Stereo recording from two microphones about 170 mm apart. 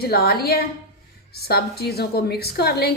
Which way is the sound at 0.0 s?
65° left (ahead or behind).